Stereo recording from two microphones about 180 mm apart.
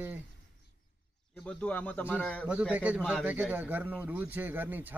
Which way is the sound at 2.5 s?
10° right (ahead or behind).